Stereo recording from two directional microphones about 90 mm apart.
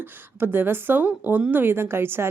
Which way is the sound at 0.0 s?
25° right (ahead or behind).